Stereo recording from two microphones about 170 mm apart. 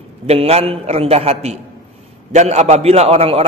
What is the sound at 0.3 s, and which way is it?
A man's voice, 35° right (ahead or behind).